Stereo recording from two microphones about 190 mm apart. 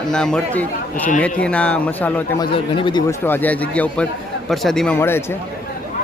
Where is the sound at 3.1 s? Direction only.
10° left (ahead or behind).